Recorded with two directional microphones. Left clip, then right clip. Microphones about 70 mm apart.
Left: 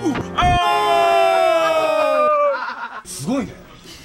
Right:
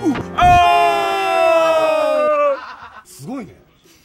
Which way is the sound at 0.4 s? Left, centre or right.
Right.